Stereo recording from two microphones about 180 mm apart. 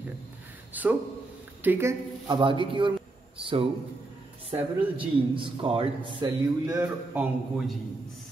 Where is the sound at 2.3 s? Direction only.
30° right (ahead or behind).